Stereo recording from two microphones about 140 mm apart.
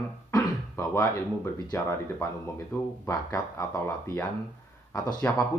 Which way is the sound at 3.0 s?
25° left (ahead or behind).